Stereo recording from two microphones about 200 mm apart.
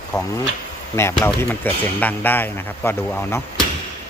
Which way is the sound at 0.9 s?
10° left (ahead or behind).